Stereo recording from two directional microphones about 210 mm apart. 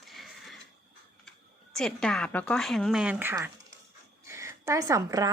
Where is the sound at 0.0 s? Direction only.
Centre (ahead or behind).